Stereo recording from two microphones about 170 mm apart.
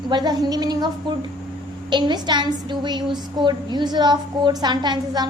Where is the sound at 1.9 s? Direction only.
25° right (ahead or behind).